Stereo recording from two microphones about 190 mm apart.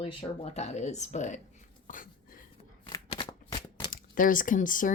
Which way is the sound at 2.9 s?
20° left (ahead or behind).